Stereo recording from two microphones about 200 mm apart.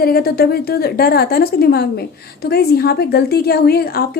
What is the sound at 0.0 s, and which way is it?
A woman's voice, 50° left (ahead or behind).